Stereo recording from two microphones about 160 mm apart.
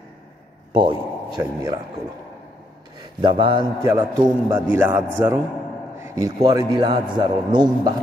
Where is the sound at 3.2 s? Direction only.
30° right (ahead or behind).